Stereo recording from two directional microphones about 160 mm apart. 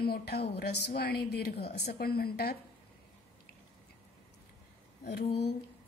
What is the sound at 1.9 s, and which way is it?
Speech, 75° left (ahead or behind).